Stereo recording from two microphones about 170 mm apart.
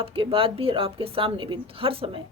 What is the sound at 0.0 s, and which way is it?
A woman's voice, 35° right (ahead or behind).